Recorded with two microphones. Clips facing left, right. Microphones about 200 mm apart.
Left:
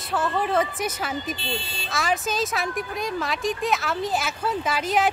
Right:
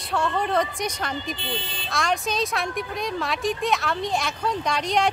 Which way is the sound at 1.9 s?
Centre (ahead or behind).